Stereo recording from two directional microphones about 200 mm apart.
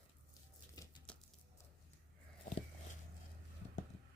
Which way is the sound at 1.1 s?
5° left (ahead or behind).